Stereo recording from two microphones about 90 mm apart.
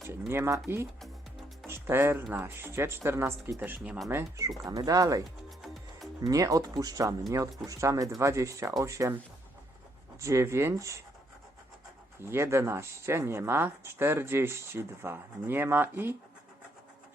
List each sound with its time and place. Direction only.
0.1 s speech: 25° right (ahead or behind)
1.6 s music: 30° right (ahead or behind)
2.3 s speech: 25° right (ahead or behind)
6.3 s speech: 40° right (ahead or behind)
10.2 s speech: 35° right (ahead or behind)
12.2 s speech: 30° right (ahead or behind)